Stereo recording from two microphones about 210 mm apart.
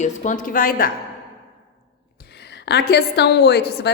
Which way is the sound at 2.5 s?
55° left (ahead or behind).